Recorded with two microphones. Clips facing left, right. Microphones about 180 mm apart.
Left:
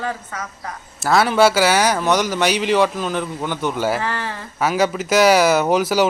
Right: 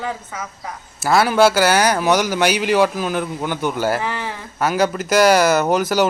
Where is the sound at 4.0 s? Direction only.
15° right (ahead or behind).